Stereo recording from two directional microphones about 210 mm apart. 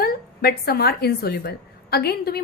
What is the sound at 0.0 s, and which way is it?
A woman's voice, 50° left (ahead or behind).